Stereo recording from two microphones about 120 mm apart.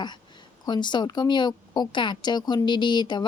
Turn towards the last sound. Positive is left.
turn(degrees=40)  # may be behind; listen again after turning